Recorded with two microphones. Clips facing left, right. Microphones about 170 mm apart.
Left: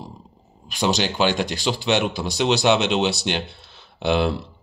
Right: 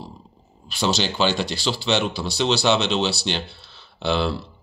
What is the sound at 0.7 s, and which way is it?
Speech, 15° left (ahead or behind).